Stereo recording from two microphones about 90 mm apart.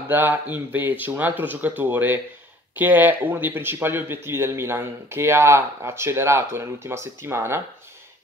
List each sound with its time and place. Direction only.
0.1 s speech: 20° right (ahead or behind)